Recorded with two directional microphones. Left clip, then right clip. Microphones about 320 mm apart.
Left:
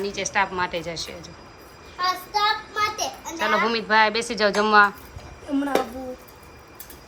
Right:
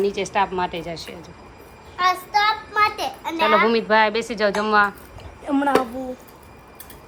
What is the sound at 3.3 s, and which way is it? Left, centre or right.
A woman's voice, centre.